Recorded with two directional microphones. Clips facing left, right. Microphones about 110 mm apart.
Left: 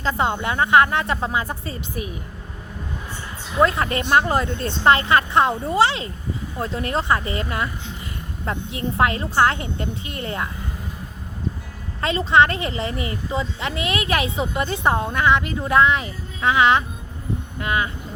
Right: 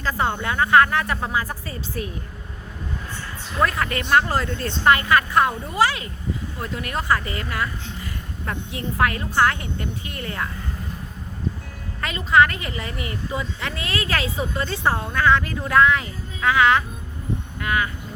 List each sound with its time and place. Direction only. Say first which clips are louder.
0.0 s speech: left 2 dB; 20° left (ahead or behind)
3.6 s speech: left 3 dB; 25° left (ahead or behind)
11.9 s speech: left 1 dB; 30° left (ahead or behind)